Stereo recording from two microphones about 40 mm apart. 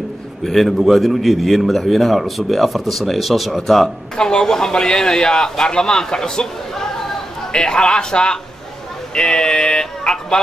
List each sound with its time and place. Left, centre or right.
0.4 s a man's voice: centre
3.6 s a man's voice: centre